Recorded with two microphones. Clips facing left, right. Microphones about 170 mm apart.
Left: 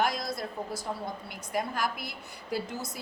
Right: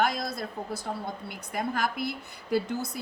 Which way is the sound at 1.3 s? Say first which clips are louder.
Right 1 dB; 55° right (ahead or behind).